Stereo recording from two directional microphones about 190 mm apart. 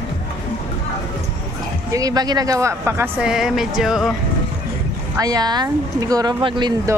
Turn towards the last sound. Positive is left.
turn(degrees=-20)  # may be behind; listen again after turning